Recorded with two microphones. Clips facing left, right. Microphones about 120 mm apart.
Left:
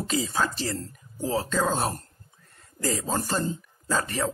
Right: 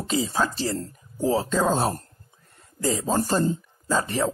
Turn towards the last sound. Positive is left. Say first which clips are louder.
# right 3 dB
turn(degrees=-25)  # may be behind; listen again after turning